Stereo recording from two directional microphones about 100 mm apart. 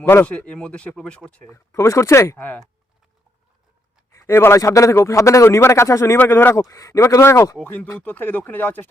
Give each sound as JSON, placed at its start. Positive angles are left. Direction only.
{"t": 0.0, "sound": "a man's voice", "side_deg": 25}
{"t": 0.3, "sound": "speech", "side_deg": 10}
{"t": 1.7, "sound": "a man's voice", "side_deg": 30}
{"t": 4.1, "sound": "a man's voice", "side_deg": 25}
{"t": 7.6, "sound": "speech", "side_deg": 15}